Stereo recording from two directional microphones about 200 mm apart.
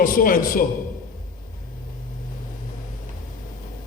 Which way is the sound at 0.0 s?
45° left (ahead or behind).